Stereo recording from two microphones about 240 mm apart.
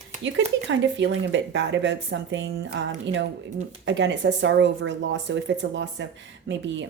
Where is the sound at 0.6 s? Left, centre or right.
Right.